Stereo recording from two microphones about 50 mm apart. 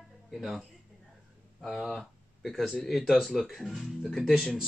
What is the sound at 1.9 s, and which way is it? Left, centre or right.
Speech, centre.